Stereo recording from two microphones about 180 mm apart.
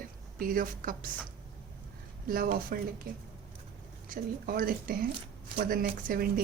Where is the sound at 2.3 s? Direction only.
55° right (ahead or behind).